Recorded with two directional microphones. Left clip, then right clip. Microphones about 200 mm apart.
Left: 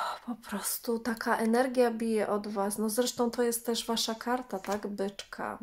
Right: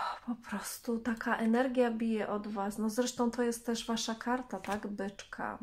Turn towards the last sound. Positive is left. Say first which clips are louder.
# left 3 dB
turn(degrees=35)  # may be behind; listen again after turning